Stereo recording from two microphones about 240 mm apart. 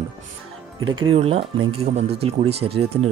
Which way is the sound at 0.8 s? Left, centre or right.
Right.